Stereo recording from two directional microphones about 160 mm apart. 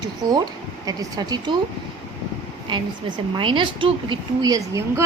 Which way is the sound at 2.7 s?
30° right (ahead or behind).